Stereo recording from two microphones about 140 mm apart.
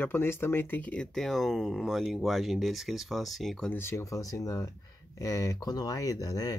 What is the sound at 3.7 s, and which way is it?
Speech, 20° left (ahead or behind).